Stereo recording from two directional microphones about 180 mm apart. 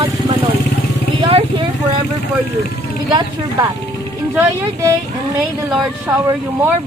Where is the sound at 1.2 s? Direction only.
30° right (ahead or behind).